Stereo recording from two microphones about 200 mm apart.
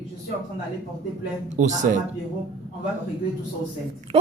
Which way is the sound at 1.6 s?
40° right (ahead or behind).